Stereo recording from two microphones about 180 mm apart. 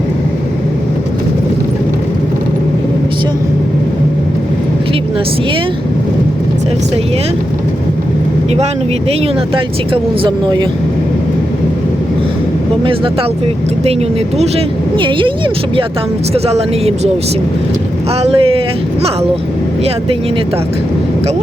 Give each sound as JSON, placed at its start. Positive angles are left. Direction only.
{"t": 9.9, "sound": "speech", "side_deg": -25}
{"t": 14.9, "sound": "speech", "side_deg": -25}
{"t": 16.3, "sound": "speech", "side_deg": -35}
{"t": 18.2, "sound": "speech", "side_deg": -30}